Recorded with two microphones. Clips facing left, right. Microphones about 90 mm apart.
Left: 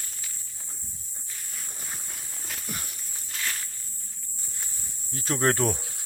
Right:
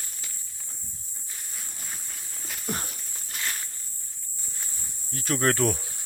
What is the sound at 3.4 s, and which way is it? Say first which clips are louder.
Walk: even; 20° right (ahead or behind).